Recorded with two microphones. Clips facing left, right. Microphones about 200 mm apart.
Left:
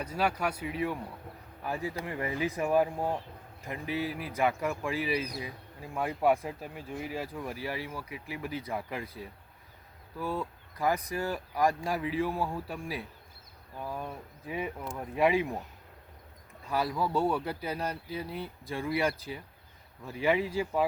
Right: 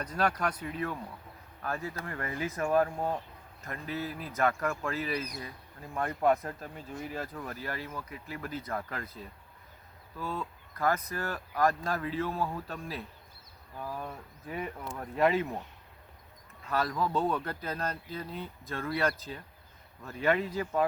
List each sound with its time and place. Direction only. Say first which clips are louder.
0.0 s speech: even; 5° left (ahead or behind)
16.6 s speech: even; 10° left (ahead or behind)